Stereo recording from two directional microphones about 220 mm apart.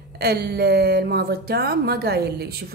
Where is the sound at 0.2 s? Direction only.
45° right (ahead or behind).